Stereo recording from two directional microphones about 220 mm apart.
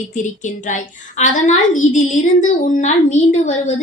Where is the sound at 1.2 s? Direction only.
35° left (ahead or behind).